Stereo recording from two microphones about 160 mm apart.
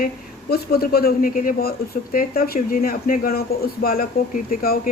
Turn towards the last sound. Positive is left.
turn(degrees=65)  # may be behind; listen again after turning